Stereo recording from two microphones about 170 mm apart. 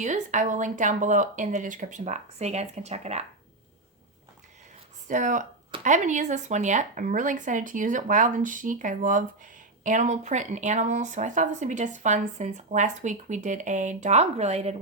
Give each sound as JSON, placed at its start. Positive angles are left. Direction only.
{"t": 0.0, "sound": "speech", "side_deg": -45}
{"t": 5.0, "sound": "speech", "side_deg": -50}